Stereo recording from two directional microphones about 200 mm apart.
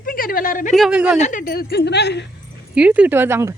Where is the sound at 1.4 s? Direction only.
50° left (ahead or behind).